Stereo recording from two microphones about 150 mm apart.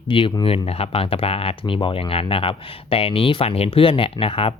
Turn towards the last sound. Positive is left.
turn(degrees=40)  # may be behind; listen again after turning